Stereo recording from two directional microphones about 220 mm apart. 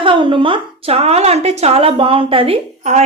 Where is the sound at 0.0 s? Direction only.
25° right (ahead or behind).